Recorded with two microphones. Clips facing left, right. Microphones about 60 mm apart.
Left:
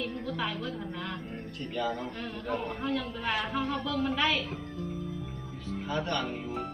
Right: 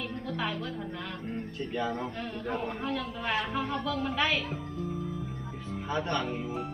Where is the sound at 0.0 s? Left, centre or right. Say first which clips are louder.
Even; centre.